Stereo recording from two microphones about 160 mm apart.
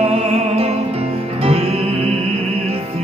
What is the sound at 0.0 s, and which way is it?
Music, 40° right (ahead or behind).